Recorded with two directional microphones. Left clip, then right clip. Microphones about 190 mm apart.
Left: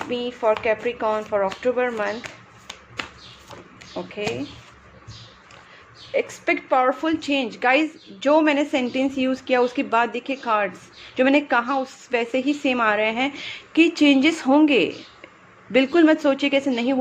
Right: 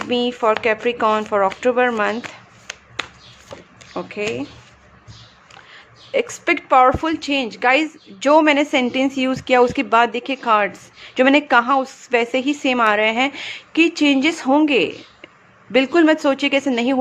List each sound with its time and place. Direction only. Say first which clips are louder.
0.1 s speech: right 4 dB; 35° right (ahead or behind)
3.9 s speech: right 4 dB; 30° right (ahead or behind)
6.1 s speech: right 3 dB; 30° right (ahead or behind)